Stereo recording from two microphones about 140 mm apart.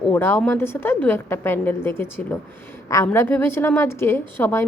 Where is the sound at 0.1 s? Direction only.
15° left (ahead or behind).